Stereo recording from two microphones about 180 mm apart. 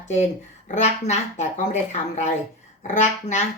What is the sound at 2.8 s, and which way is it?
Speech, 40° left (ahead or behind).